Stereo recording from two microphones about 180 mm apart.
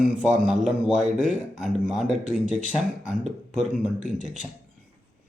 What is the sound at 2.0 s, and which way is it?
Speech, 45° right (ahead or behind).